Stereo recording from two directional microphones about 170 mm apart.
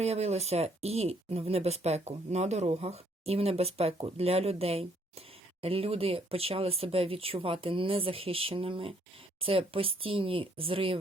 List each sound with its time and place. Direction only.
0.0 s speech: 40° right (ahead or behind)